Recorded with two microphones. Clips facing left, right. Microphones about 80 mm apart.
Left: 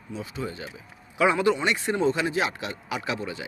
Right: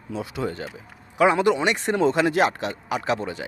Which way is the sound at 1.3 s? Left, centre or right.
Right.